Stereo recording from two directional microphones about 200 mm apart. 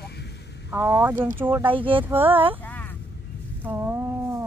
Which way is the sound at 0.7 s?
10° right (ahead or behind).